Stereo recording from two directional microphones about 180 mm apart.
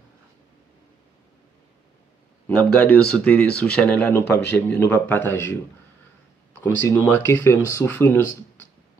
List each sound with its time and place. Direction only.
2.4 s speech: 10° left (ahead or behind)
6.6 s speech: 15° left (ahead or behind)